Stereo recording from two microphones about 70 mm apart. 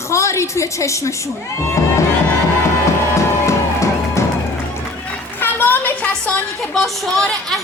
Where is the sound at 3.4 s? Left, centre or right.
Left.